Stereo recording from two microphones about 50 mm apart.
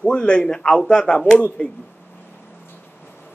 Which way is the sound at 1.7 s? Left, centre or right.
Left.